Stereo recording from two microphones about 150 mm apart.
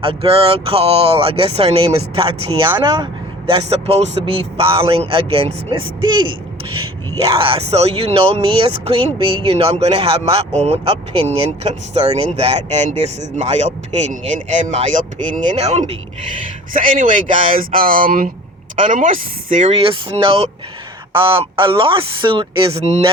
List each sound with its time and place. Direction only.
0.0 s speech: 40° right (ahead or behind)
3.5 s speech: 40° right (ahead or behind)
16.7 s speech: 65° right (ahead or behind)
19.8 s speech: 35° right (ahead or behind)